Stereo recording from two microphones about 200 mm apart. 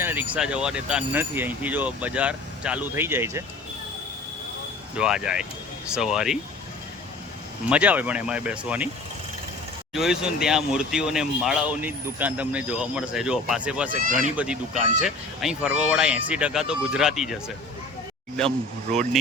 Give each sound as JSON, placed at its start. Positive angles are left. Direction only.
{"t": 0.0, "sound": "speech", "side_deg": -10}
{"t": 4.9, "sound": "speech", "side_deg": -5}
{"t": 7.7, "sound": "speech", "side_deg": -5}
{"t": 9.9, "sound": "speech", "side_deg": 0}
{"t": 14.0, "sound": "speech", "side_deg": -45}
{"t": 14.3, "sound": "speech", "side_deg": -5}